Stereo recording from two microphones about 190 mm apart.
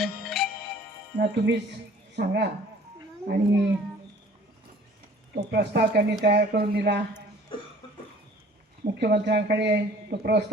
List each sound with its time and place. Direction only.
0.0 s music: centre (ahead or behind)
1.1 s a man's voice: 65° right (ahead or behind)
5.3 s a man's voice: 60° right (ahead or behind)
8.8 s a man's voice: 60° right (ahead or behind)